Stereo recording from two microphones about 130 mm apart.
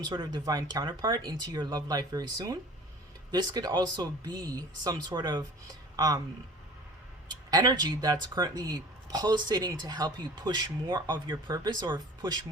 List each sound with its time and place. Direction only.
0.0 s speech: 35° right (ahead or behind)
7.3 s speech: 30° right (ahead or behind)